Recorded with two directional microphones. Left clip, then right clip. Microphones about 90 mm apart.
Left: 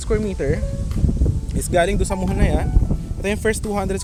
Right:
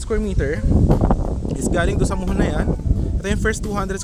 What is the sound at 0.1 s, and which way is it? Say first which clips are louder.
Speech: left 1 dB; 80° right.